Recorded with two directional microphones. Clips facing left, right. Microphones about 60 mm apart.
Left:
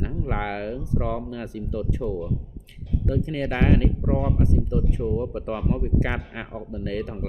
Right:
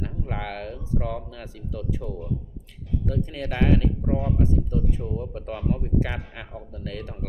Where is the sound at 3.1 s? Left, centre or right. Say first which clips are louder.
Left 5 dB; left.